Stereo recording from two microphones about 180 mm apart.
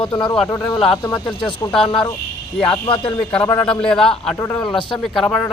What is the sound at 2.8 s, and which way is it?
Speech, 30° left (ahead or behind).